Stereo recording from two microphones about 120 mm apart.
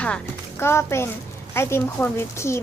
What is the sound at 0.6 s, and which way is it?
Speech, 20° left (ahead or behind).